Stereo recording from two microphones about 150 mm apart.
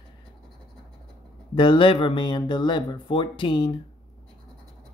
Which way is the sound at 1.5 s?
30° left (ahead or behind).